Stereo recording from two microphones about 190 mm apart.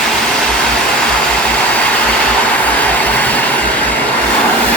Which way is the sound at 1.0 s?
5° left (ahead or behind).